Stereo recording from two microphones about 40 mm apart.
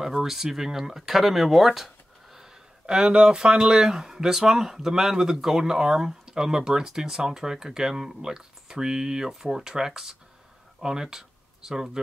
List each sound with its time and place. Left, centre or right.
0.0 s speech: centre
2.3 s speech: centre
10.8 s a sound: centre